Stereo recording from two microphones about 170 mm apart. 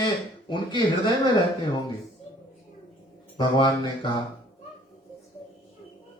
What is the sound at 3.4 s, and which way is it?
Speech, 25° left (ahead or behind).